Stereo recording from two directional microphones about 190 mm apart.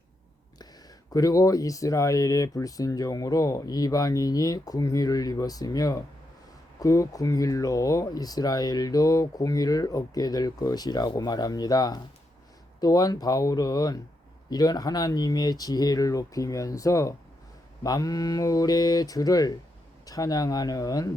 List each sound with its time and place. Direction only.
1.1 s speech: 20° left (ahead or behind)